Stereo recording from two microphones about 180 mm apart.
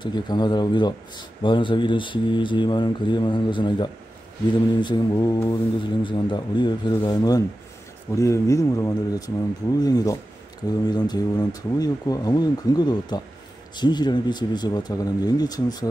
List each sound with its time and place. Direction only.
0.0 s speech: 25° left (ahead or behind)